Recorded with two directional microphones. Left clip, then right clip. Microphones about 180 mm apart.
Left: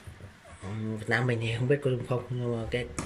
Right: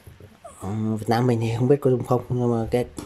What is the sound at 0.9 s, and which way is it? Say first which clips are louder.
Speech: right 6 dB; 30° right (ahead or behind).